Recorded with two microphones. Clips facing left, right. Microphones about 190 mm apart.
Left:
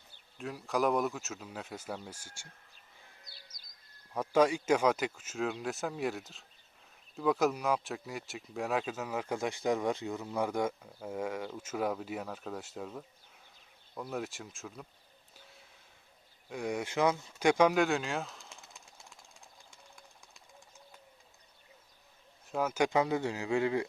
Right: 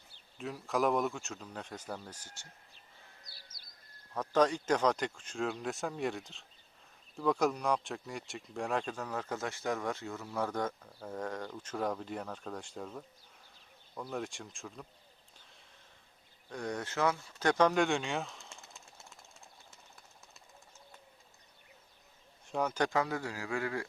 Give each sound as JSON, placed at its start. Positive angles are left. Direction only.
{"t": 0.3, "sound": "speech", "side_deg": 0}
{"t": 3.2, "sound": "bird", "side_deg": 20}
{"t": 4.1, "sound": "speech", "side_deg": 10}
{"t": 16.5, "sound": "speech", "side_deg": 10}
{"t": 19.7, "sound": "bird", "side_deg": -5}
{"t": 22.4, "sound": "speech", "side_deg": 5}
{"t": 22.9, "sound": "speech", "side_deg": 20}